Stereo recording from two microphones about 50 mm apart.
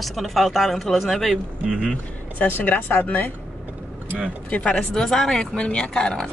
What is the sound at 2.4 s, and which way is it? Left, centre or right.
Speech, left.